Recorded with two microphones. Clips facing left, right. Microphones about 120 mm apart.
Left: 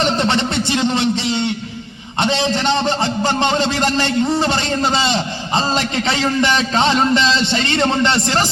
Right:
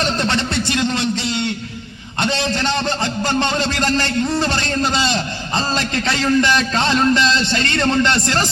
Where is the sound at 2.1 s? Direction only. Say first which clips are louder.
Left 3 dB; 20° left (ahead or behind).